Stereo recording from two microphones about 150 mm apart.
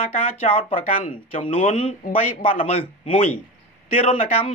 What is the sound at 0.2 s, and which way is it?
A man's voice, 40° left (ahead or behind).